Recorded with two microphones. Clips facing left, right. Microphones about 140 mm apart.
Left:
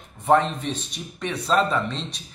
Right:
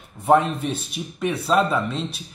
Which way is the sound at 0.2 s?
10° right (ahead or behind).